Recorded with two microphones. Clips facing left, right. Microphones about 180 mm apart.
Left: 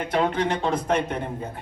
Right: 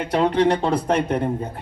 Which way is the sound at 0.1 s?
35° right (ahead or behind).